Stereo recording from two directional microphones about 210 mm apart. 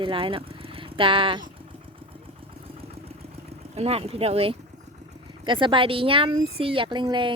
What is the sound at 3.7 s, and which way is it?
Speech, 30° right (ahead or behind).